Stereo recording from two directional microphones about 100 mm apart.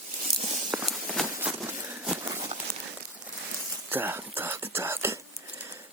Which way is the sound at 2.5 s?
75° right (ahead or behind).